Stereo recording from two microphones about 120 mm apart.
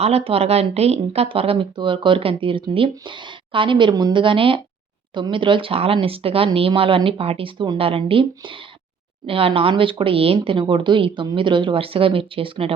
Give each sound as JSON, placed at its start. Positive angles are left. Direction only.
{"t": 0.0, "sound": "speech", "side_deg": -55}